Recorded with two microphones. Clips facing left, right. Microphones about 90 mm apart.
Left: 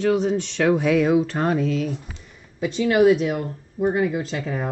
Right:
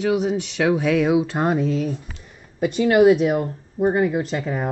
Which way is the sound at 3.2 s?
35° right (ahead or behind).